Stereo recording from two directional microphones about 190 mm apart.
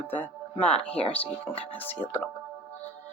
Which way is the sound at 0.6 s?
5° left (ahead or behind).